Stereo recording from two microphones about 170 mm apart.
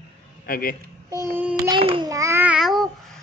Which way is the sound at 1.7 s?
25° right (ahead or behind).